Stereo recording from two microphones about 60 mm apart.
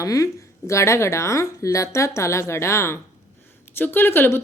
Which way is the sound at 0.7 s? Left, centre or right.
Left.